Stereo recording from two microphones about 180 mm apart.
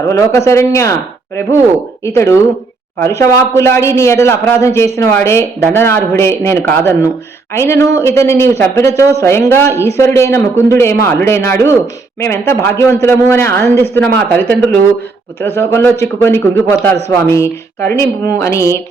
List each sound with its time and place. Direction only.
0.1 s a man's voice: 15° left (ahead or behind)
2.0 s a man's voice: 15° left (ahead or behind)